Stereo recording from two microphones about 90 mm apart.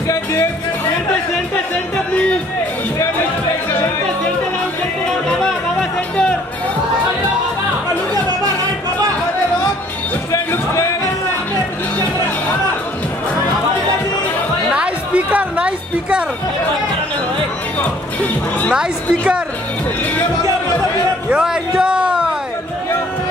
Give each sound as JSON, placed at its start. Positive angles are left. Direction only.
{"t": 0.1, "sound": "music", "side_deg": 30}
{"t": 5.4, "sound": "music", "side_deg": 10}
{"t": 10.3, "sound": "music", "side_deg": 35}
{"t": 14.7, "sound": "music", "side_deg": -15}
{"t": 17.7, "sound": "music", "side_deg": 20}
{"t": 18.7, "sound": "a woman's voice", "side_deg": -10}
{"t": 21.3, "sound": "a sound", "side_deg": -10}